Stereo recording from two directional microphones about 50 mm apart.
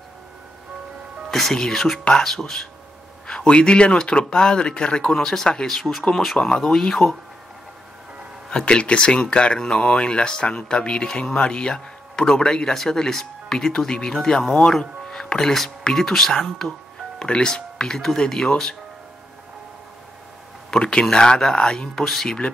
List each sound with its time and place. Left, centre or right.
1.3 s speech: centre
8.5 s speech: centre
20.7 s speech: centre